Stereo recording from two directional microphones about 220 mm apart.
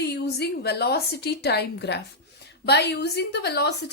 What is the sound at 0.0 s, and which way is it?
A woman's voice, 50° left (ahead or behind).